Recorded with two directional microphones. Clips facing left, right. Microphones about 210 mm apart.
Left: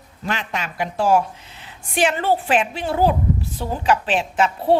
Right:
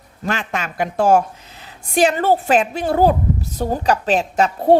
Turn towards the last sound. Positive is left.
turn(degrees=-40)  # may be behind; listen again after turning